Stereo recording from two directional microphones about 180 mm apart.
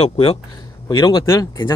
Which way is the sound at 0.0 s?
35° left (ahead or behind).